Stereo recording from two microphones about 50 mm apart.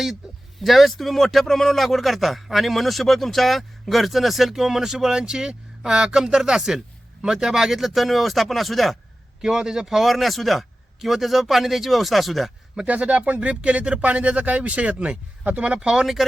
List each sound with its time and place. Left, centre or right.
0.6 s a man's voice: centre
9.4 s a man's voice: centre
12.8 s speech: right